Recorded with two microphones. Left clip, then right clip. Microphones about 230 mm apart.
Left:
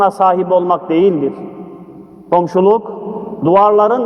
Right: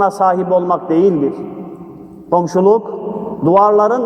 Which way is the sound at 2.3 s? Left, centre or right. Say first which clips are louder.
Left 1 dB; left.